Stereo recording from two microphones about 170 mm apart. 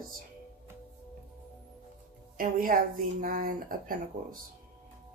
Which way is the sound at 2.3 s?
55° right (ahead or behind).